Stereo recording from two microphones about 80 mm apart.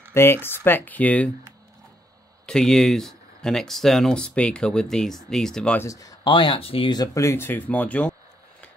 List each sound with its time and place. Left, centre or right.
0.1 s speech: left
2.4 s speech: centre
5.9 s speech: left
6.2 s speech: left
7.2 s speech: left; by 8.2 s centre